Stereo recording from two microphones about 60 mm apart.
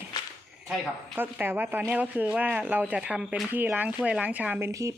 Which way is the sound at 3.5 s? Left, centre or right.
Right.